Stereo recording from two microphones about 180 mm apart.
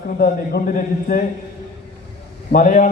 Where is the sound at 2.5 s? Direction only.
45° left (ahead or behind).